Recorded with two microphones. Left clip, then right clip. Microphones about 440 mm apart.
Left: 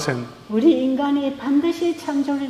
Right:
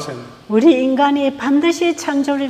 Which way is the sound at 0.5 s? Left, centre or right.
Right.